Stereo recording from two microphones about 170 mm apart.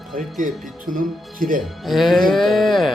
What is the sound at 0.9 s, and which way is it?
Speech, 55° right (ahead or behind).